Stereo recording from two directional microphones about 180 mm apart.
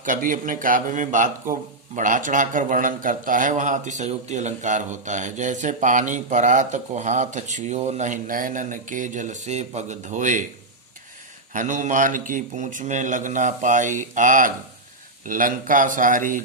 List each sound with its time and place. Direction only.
0.0 s a man's voice: 45° right (ahead or behind)
11.5 s a man's voice: 45° right (ahead or behind)